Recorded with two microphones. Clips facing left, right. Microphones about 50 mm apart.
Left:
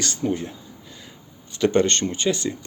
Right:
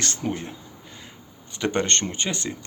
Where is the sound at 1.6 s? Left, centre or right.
Right.